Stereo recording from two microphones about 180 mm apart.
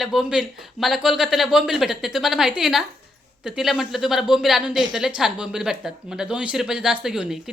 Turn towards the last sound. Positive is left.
turn(degrees=-5)  # may be behind; listen again after turning